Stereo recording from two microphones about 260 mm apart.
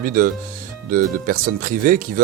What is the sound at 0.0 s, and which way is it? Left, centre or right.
Speech, right.